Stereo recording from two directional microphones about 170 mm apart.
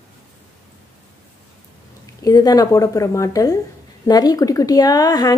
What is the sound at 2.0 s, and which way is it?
A woman's voice, 20° left (ahead or behind).